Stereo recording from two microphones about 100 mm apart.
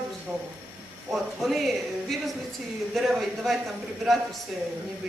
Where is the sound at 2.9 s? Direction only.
Centre (ahead or behind).